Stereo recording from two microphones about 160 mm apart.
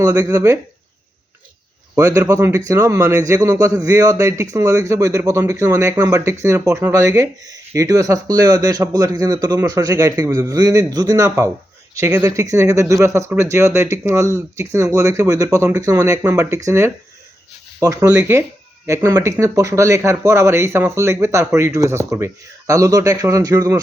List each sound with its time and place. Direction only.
0.0 s speech: 20° right (ahead or behind)
2.0 s speech: 20° right (ahead or behind)